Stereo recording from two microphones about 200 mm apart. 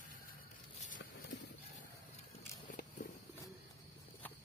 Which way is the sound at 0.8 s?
40° left (ahead or behind).